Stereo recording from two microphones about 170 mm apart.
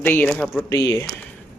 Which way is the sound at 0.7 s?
20° left (ahead or behind).